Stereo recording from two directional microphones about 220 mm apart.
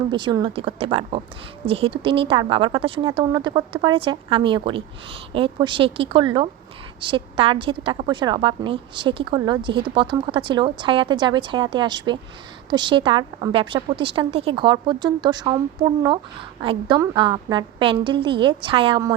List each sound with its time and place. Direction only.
0.1 s a woman's voice: 20° right (ahead or behind)